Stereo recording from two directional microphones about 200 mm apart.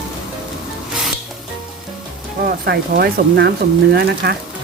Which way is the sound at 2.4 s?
50° right (ahead or behind).